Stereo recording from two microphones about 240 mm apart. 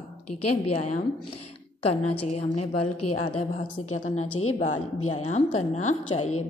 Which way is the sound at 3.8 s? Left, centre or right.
Left.